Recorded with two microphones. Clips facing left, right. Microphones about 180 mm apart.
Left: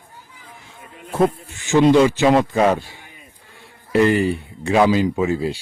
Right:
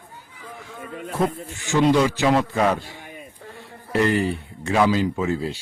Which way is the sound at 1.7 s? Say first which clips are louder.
Left 5 dB; 25° left (ahead or behind).